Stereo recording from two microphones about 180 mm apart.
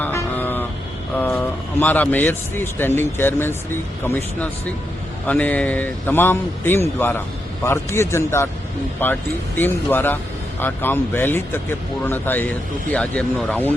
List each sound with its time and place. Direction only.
0.0 s vehicle: 10° left (ahead or behind)
1.1 s speech: 10° left (ahead or behind)